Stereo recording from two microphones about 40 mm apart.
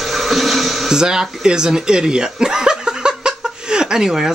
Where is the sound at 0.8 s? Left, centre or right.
Centre.